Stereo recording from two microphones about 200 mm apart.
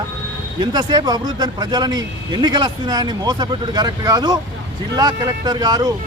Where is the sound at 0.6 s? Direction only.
20° right (ahead or behind).